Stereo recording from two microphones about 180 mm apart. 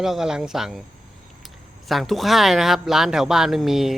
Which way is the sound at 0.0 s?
5° right (ahead or behind).